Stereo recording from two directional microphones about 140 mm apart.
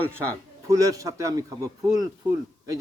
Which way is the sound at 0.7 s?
25° right (ahead or behind).